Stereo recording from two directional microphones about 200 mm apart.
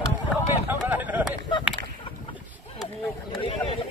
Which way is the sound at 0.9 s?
10° right (ahead or behind).